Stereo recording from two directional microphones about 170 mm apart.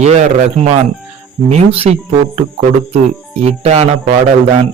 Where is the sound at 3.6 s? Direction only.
40° right (ahead or behind).